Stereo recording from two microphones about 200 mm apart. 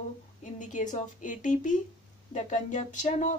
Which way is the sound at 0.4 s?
40° left (ahead or behind).